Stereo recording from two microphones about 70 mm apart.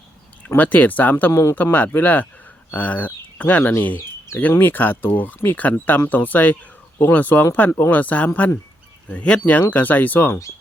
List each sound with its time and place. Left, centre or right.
0.4 s speech: left
1.3 s speech: left
1.5 s speech: left